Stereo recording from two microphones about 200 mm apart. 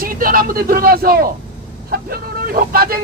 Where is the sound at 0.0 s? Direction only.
45° right (ahead or behind).